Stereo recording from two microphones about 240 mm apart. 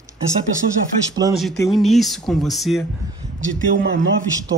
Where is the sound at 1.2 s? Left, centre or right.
Centre.